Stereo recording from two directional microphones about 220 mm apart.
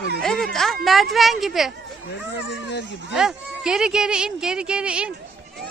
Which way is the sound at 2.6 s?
50° left (ahead or behind).